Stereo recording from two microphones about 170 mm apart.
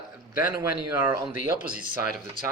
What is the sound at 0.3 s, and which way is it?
Speech, 15° right (ahead or behind).